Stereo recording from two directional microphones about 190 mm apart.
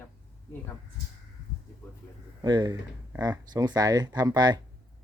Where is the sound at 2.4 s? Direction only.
20° right (ahead or behind).